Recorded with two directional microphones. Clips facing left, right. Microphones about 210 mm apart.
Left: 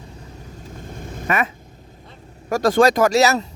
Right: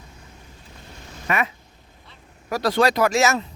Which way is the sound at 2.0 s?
45° left (ahead or behind).